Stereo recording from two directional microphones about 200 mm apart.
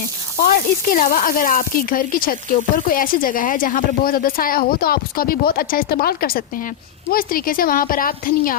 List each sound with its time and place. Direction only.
0.4 s a woman's voice: 45° left (ahead or behind)